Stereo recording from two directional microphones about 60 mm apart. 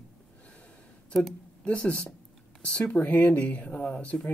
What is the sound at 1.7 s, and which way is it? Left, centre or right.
Speech, left.